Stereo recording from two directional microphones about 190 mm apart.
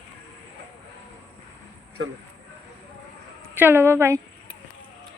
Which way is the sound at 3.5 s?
10° right (ahead or behind).